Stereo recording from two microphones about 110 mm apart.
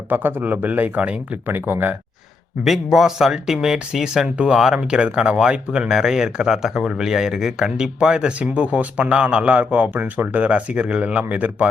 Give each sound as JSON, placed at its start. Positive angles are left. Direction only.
{"t": 0.1, "sound": "speech", "side_deg": -20}
{"t": 2.6, "sound": "speech", "side_deg": -5}